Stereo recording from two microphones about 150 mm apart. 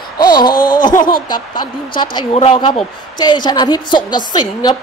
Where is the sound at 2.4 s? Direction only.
40° left (ahead or behind).